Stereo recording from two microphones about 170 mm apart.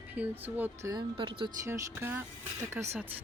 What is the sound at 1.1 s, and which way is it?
Speech, 30° right (ahead or behind).